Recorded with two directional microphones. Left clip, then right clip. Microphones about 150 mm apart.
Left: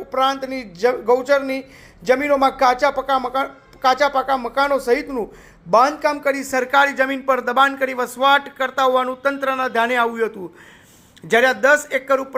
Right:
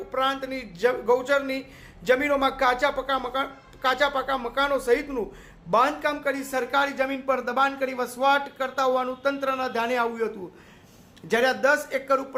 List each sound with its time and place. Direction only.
0.1 s speech: 35° left (ahead or behind)